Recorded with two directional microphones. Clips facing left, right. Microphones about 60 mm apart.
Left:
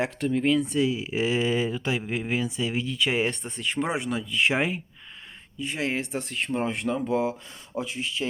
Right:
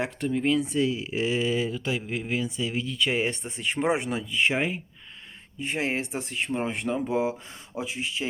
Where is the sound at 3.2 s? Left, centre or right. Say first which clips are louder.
Left 1 dB; centre.